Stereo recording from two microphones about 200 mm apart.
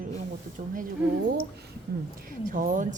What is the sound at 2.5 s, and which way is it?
Speech, 40° right (ahead or behind).